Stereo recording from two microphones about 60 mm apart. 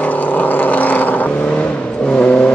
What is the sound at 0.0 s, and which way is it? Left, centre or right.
Vehicle, left.